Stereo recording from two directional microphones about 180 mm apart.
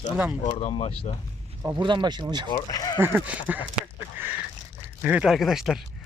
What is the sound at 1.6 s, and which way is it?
Speech, 25° right (ahead or behind).